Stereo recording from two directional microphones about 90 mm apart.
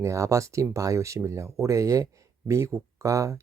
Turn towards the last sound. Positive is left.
turn(degrees=-35)  # may be behind; listen again after turning